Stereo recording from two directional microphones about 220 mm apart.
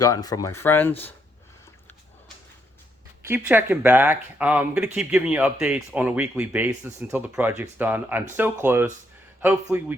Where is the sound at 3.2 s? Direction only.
10° right (ahead or behind).